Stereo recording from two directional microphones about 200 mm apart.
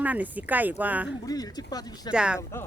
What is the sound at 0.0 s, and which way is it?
Speech, 10° right (ahead or behind).